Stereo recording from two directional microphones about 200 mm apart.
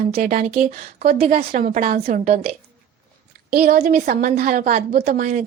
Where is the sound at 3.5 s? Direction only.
45° right (ahead or behind).